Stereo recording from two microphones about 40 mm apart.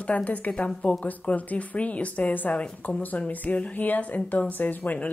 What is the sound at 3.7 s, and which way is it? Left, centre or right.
A woman's voice, left.